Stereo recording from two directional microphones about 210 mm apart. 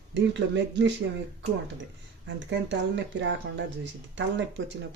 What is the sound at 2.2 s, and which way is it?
Speech, 60° right (ahead or behind).